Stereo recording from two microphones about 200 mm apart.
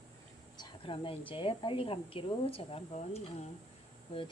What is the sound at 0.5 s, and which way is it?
A woman's voice, 25° left (ahead or behind).